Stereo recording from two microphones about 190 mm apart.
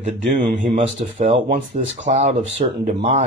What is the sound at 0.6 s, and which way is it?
Speech, 30° right (ahead or behind).